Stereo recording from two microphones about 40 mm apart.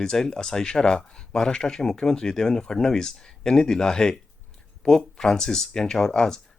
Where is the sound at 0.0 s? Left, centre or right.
Centre.